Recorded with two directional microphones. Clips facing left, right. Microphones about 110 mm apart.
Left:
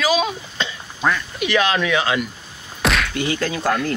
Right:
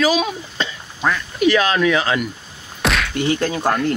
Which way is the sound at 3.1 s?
30° right (ahead or behind).